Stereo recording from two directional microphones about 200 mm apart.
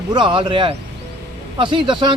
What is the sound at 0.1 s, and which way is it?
Speech, 25° right (ahead or behind).